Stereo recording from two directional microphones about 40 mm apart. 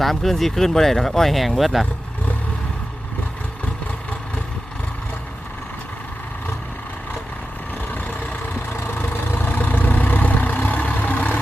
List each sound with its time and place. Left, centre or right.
0.0 s speech: centre
8.0 s vehicle: left
9.0 s vehicle: left